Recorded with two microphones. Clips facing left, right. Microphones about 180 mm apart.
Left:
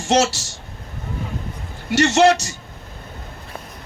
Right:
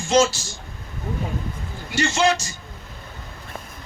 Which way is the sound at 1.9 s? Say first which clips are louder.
Left 6 dB; 70° left (ahead or behind).